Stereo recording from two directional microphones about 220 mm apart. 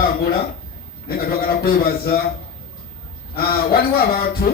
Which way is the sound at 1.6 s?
45° left (ahead or behind).